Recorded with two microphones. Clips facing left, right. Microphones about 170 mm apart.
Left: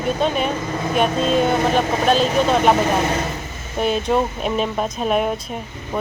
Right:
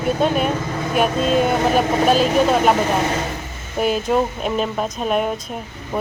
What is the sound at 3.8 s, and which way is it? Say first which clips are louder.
Speech: right 1 dB; 5° right (ahead or behind).